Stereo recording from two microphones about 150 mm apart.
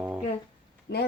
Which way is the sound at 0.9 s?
90° left.